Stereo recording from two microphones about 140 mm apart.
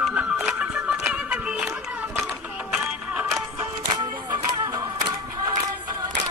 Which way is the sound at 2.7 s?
10° right (ahead or behind).